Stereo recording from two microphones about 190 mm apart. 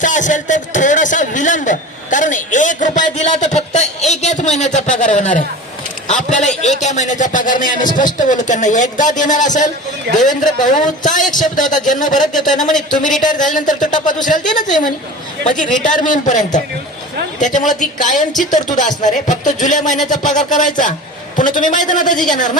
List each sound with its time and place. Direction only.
0.0 s a man's voice: 40° left (ahead or behind)